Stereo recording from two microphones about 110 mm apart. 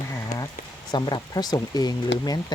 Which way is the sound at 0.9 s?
40° left (ahead or behind).